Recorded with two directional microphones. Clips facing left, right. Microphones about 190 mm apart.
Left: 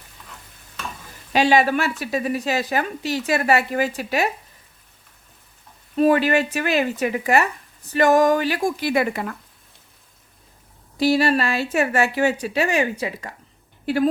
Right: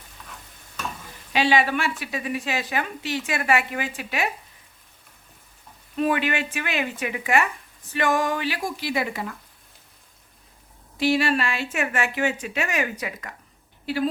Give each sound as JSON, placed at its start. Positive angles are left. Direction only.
{"t": 1.3, "sound": "a woman's voice", "side_deg": 45}
{"t": 6.0, "sound": "a woman's voice", "side_deg": 35}
{"t": 10.9, "sound": "a woman's voice", "side_deg": 40}
{"t": 13.9, "sound": "a woman's voice", "side_deg": 50}